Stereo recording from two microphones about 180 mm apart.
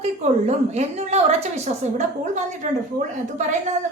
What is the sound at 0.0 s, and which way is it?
A woman's voice, 35° right (ahead or behind).